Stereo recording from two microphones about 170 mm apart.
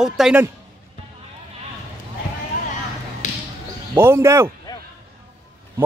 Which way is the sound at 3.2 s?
45° left (ahead or behind).